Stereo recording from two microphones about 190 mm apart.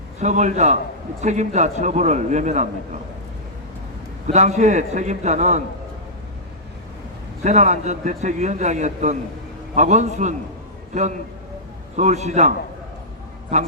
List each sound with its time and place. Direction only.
0.2 s a man's voice: 40° right (ahead or behind)
4.3 s a man's voice: 35° right (ahead or behind)
7.4 s a man's voice: 40° right (ahead or behind)